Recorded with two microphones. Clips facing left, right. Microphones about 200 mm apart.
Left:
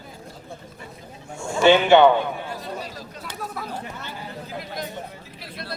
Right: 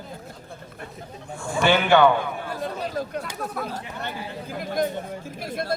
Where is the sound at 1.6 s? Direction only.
20° left (ahead or behind).